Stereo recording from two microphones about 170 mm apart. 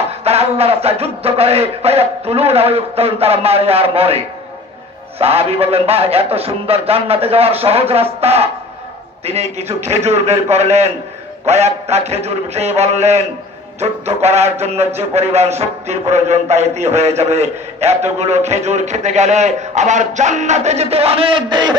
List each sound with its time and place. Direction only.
0.2 s speech: 35° right (ahead or behind)
5.2 s speech: 35° right (ahead or behind)